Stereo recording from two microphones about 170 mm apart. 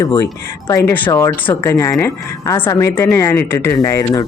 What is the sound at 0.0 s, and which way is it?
A woman's voice, 20° left (ahead or behind).